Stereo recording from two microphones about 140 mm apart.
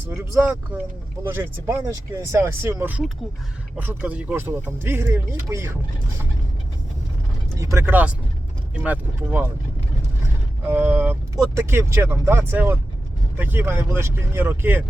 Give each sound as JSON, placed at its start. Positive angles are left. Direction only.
{"t": 0.1, "sound": "speech", "side_deg": -15}
{"t": 7.6, "sound": "speech", "side_deg": -20}
{"t": 10.7, "sound": "speech", "side_deg": -15}